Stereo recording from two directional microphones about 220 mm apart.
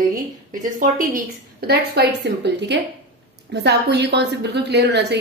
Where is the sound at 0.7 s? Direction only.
40° right (ahead or behind).